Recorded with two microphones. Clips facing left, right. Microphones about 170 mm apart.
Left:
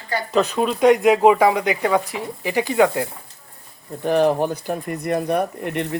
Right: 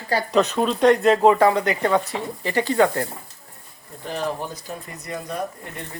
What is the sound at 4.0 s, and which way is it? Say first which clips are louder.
Speech: left 10 dB; 60° left (ahead or behind).